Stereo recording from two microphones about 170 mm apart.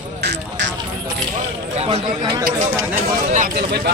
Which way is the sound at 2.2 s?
25° right (ahead or behind).